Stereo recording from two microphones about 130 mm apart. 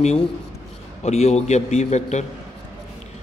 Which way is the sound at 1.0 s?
55° left (ahead or behind).